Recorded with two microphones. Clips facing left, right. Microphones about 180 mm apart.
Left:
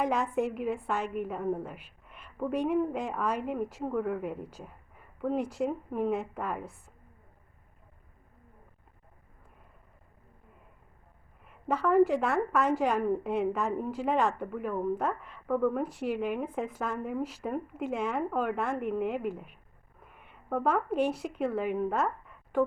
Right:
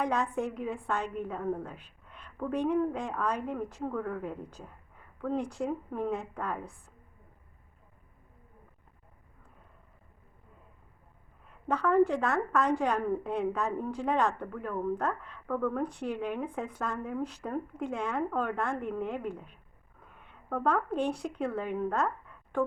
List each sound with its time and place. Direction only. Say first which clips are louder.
0.0 s a woman's voice: left 2 dB; 5° left (ahead or behind)
11.7 s a woman's voice: left 1 dB; 5° left (ahead or behind)